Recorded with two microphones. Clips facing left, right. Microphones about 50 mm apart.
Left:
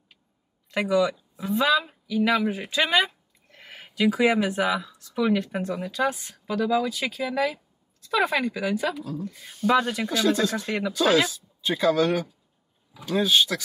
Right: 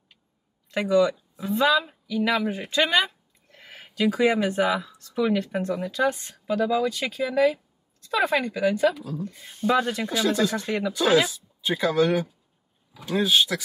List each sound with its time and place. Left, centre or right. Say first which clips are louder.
0.7 s speech: right 2 dB; centre
9.4 s speech: even; right
9.8 s speech: even; centre
10.0 s speech: left 1 dB; centre
10.6 s speech: right 1 dB; centre
10.9 s speech: even; centre